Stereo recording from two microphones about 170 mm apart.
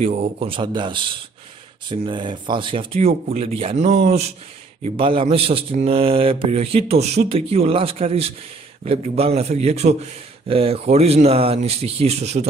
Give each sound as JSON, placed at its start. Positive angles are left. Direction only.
{"t": 0.0, "sound": "speech", "side_deg": -35}